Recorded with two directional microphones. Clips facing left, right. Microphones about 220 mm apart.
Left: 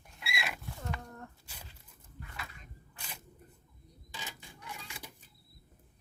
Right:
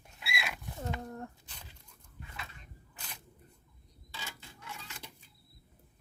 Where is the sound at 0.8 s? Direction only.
25° right (ahead or behind).